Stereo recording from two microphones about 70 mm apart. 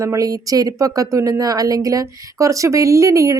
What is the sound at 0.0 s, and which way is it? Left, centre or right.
Speech, right.